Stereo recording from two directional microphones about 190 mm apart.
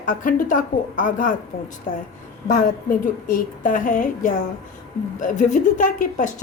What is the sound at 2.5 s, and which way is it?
A woman's voice, 45° left (ahead or behind).